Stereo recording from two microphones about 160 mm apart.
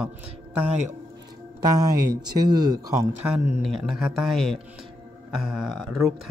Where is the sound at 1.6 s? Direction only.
20° right (ahead or behind).